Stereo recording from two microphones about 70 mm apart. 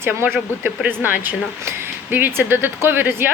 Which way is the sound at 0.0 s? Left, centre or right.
Right.